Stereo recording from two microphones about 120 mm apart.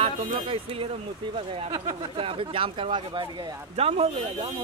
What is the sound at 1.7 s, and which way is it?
Speech, 40° right (ahead or behind).